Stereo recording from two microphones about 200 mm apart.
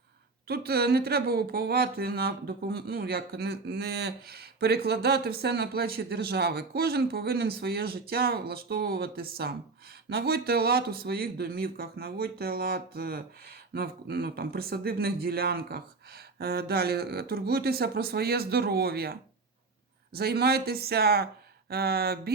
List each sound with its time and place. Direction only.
0.4 s speech: 50° right (ahead or behind)
20.1 s speech: 50° right (ahead or behind)